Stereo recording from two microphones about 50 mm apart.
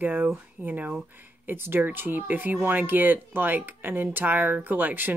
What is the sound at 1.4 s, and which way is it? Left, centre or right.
Speech, right.